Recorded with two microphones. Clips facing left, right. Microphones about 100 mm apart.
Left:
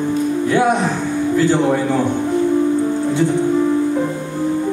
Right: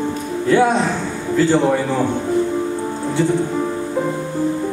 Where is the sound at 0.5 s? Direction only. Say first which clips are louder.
Right 2 dB; 15° left (ahead or behind).